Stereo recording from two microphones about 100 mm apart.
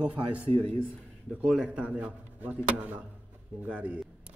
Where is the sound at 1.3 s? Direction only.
10° right (ahead or behind).